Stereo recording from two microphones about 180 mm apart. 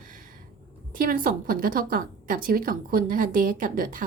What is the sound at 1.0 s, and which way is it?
A woman's voice, 50° right (ahead or behind).